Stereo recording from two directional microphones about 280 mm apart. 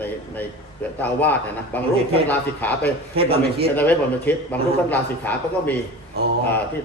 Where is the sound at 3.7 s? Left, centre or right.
Centre.